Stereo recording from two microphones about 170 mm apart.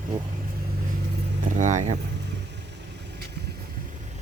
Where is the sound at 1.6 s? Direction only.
45° right (ahead or behind).